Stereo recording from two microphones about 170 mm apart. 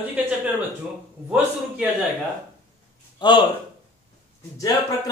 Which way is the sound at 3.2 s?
25° left (ahead or behind).